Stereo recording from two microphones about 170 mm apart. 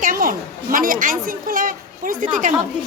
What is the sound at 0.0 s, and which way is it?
A woman's voice, 55° right (ahead or behind).